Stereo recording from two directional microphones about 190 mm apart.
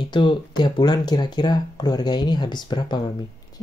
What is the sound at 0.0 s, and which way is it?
Speech, 25° left (ahead or behind).